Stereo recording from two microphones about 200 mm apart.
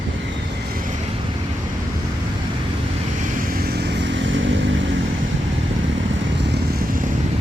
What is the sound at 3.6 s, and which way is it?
Vehicle, 55° right (ahead or behind).